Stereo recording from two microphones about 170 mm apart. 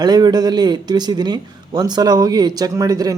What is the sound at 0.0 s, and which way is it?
Speech, 25° right (ahead or behind).